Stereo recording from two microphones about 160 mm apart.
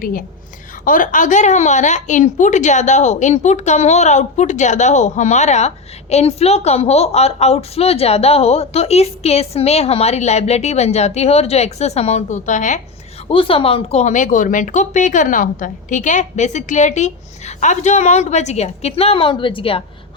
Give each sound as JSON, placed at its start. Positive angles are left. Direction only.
{"t": 0.0, "sound": "a woman's voice", "side_deg": 65}
{"t": 13.2, "sound": "a woman's voice", "side_deg": 35}